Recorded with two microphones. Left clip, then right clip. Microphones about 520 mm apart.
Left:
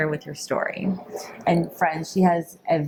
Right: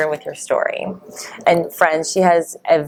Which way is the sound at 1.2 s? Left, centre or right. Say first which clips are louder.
Right 8 dB; right.